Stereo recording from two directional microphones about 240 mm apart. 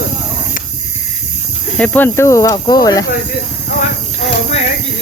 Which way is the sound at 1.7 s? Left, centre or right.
Centre.